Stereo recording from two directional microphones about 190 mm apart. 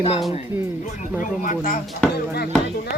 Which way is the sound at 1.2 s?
45° left (ahead or behind).